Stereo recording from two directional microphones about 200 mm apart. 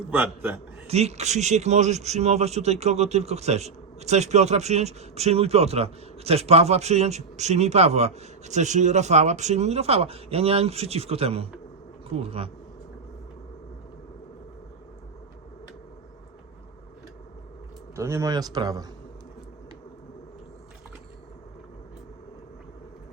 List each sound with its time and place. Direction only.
0.1 s a man's voice: 10° right (ahead or behind)
0.9 s a man's voice: 35° right (ahead or behind)
17.9 s a man's voice: 15° right (ahead or behind)